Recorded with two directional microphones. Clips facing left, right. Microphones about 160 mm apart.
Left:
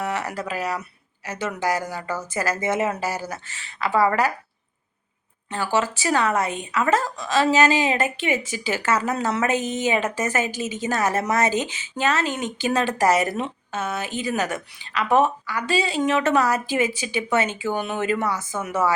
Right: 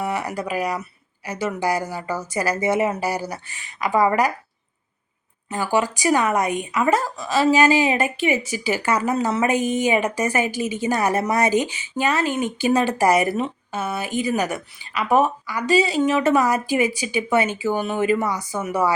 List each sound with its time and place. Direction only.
0.0 s speech: 10° right (ahead or behind)
5.5 s speech: 15° right (ahead or behind)